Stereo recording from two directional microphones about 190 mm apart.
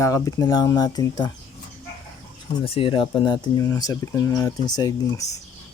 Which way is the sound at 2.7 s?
30° left (ahead or behind).